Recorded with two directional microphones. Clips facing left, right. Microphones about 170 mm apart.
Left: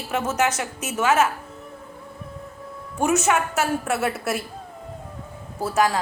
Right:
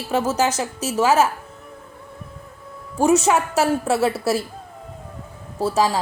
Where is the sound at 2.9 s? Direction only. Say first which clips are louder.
Right 4 dB; 30° right (ahead or behind).